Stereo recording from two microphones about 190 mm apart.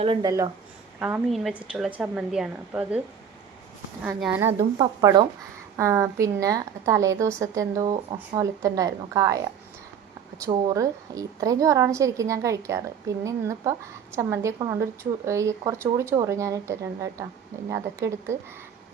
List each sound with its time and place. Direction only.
0.0 s a woman's voice: 25° right (ahead or behind); by 3.0 s 5° right (ahead or behind)
4.2 s a woman's voice: 10° right (ahead or behind)
4.8 s a woman's voice: 25° right (ahead or behind)
10.4 s a woman's voice: 20° right (ahead or behind)